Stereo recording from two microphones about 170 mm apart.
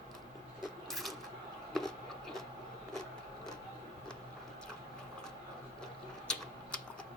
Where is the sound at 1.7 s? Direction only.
Centre (ahead or behind).